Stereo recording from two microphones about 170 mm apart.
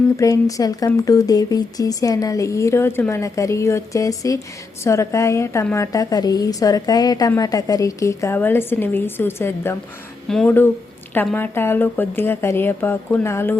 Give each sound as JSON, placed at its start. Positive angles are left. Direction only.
{"t": 0.2, "sound": "a woman's voice", "side_deg": 20}